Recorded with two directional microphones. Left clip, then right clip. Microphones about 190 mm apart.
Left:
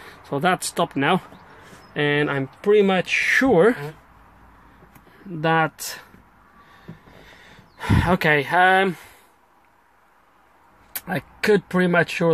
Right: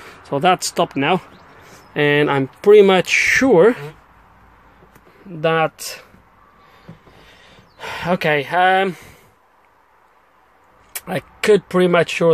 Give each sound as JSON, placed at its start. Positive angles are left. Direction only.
{"t": 0.0, "sound": "speech", "side_deg": -15}
{"t": 2.0, "sound": "speech", "side_deg": -20}
{"t": 3.3, "sound": "speech", "side_deg": -15}
{"t": 5.4, "sound": "speech", "side_deg": 0}
{"t": 7.2, "sound": "speech", "side_deg": 0}
{"t": 10.9, "sound": "speech", "side_deg": -10}